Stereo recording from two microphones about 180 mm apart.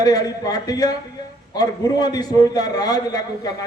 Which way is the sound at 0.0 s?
20° left (ahead or behind).